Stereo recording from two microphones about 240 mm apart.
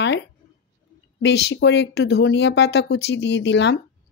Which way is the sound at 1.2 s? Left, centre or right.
Left.